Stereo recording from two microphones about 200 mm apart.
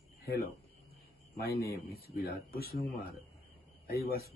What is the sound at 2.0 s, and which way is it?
Speech, 50° left (ahead or behind).